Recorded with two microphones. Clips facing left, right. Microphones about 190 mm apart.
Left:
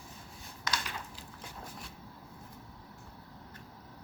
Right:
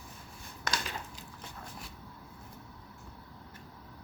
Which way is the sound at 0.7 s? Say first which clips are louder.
Right 1 dB; 50° right (ahead or behind).